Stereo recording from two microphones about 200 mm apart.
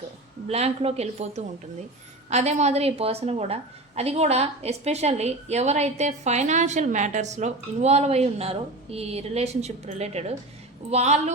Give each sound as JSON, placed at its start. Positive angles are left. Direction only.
{"t": 0.4, "sound": "a woman's voice", "side_deg": -30}